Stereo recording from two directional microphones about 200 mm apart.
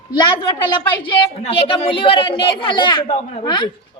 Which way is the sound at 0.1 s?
20° left (ahead or behind).